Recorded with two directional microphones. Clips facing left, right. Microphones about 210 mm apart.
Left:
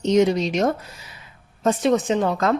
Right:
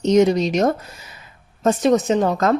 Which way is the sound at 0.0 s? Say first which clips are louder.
Right 3 dB; 40° right (ahead or behind).